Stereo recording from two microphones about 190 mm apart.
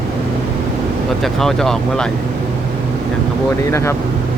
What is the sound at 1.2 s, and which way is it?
Speech, centre (ahead or behind).